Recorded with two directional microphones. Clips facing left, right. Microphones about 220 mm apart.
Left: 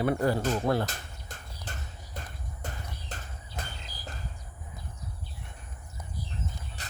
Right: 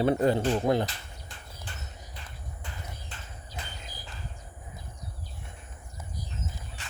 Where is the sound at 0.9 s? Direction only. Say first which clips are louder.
Left 3 dB; 45° left (ahead or behind).